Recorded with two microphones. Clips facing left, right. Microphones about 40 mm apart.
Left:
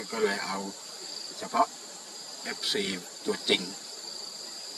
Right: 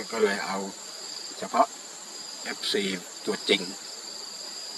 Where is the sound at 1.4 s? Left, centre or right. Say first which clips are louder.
Right 3 dB; right.